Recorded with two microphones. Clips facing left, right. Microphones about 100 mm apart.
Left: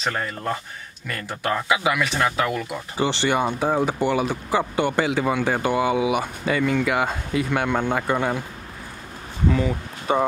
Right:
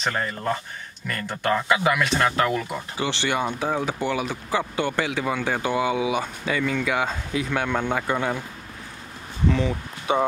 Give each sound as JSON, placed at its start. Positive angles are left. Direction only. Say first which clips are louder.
{"t": 0.0, "sound": "speech", "louder": "even", "side_deg": 0}
{"t": 3.0, "sound": "speech", "louder": "left 4 dB", "side_deg": 15}
{"t": 9.5, "sound": "speech", "louder": "left 1 dB", "side_deg": 5}